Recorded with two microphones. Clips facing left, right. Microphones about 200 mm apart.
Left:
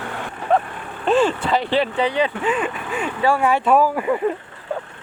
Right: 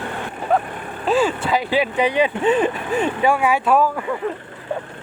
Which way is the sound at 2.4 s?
35° right (ahead or behind).